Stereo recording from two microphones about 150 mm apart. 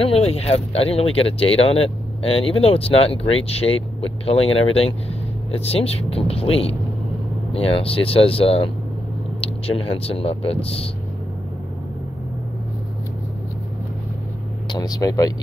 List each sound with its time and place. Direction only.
0.0 s speech: 40° left (ahead or behind)
14.7 s speech: 25° left (ahead or behind)